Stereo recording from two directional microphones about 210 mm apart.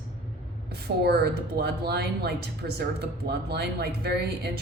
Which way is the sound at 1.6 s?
50° right (ahead or behind).